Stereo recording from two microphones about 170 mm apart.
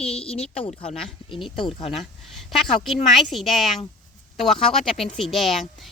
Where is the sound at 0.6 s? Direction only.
40° left (ahead or behind).